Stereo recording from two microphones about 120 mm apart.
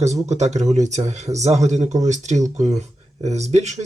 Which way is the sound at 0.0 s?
70° right (ahead or behind).